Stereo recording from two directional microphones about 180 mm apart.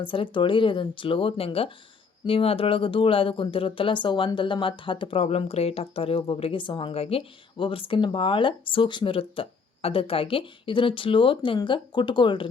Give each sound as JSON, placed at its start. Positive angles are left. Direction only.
{"t": 0.0, "sound": "speech", "side_deg": 30}